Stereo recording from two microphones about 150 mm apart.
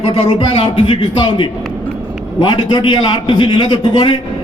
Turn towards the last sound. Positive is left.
turn(degrees=30)  # may be behind; listen again after turning